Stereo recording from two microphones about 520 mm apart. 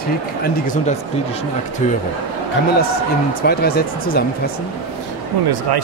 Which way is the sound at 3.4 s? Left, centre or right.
Centre.